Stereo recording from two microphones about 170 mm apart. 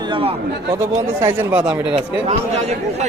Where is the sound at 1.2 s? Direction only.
15° right (ahead or behind).